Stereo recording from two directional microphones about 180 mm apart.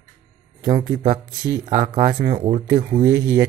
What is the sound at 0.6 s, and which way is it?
Speech, 25° right (ahead or behind).